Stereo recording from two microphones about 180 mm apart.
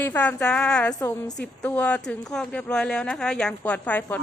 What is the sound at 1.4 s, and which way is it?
A woman's voice, 5° left (ahead or behind).